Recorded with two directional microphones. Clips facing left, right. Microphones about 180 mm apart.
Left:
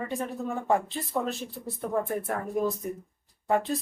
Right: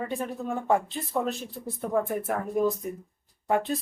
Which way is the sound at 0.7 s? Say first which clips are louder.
Right 1 dB; centre (ahead or behind).